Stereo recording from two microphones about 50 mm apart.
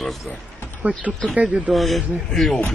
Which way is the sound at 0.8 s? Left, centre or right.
Right.